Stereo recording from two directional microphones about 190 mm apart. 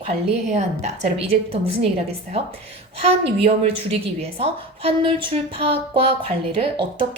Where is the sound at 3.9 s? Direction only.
30° right (ahead or behind).